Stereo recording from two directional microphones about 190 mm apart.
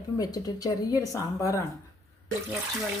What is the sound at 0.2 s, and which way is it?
Speech, 20° left (ahead or behind).